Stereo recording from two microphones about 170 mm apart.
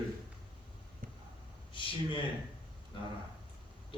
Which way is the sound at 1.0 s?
55° right (ahead or behind).